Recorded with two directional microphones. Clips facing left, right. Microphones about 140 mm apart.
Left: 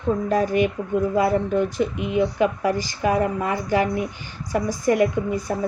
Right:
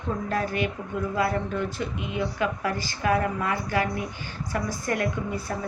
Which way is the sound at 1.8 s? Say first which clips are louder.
Left 8 dB; 20° left (ahead or behind).